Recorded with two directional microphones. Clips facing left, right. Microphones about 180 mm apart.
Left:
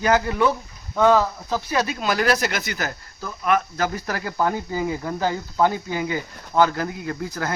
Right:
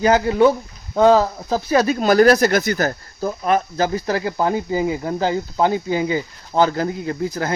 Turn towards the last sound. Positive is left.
turn(degrees=-25)  # may be behind; listen again after turning